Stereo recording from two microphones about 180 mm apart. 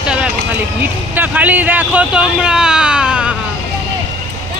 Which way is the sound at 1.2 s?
10° right (ahead or behind).